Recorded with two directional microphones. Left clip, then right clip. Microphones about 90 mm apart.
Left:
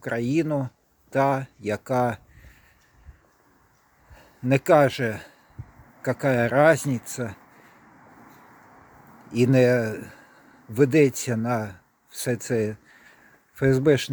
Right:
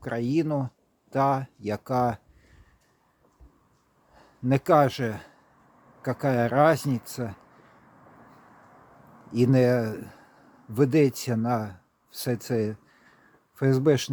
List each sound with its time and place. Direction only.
0.0 s speech: 20° right (ahead or behind)
4.1 s speech: 20° right (ahead or behind)
9.3 s speech: 20° right (ahead or behind)